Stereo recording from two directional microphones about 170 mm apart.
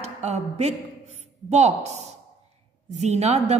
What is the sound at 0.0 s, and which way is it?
A woman's voice, 40° right (ahead or behind).